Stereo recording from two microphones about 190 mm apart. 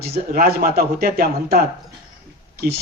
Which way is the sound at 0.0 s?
50° right (ahead or behind).